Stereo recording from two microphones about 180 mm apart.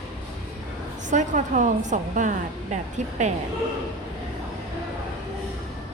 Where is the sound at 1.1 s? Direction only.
45° right (ahead or behind).